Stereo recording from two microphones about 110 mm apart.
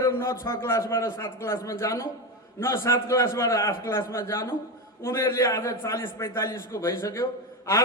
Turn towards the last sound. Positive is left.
turn(degrees=25)  # may be behind; listen again after turning